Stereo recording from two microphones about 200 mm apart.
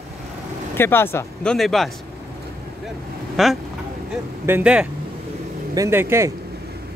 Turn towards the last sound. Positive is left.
turn(degrees=-15)  # may be behind; listen again after turning